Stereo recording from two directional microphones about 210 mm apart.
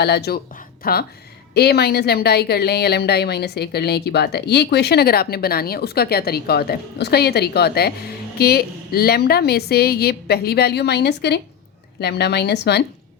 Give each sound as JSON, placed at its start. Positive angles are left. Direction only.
{"t": 0.0, "sound": "a woman's voice", "side_deg": 50}